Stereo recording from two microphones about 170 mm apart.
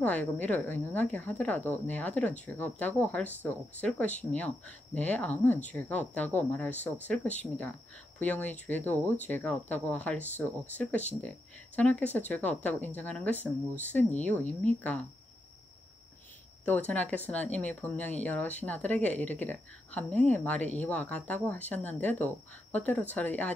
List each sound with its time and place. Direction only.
0.0 s speech: 10° left (ahead or behind)
16.6 s speech: 10° left (ahead or behind)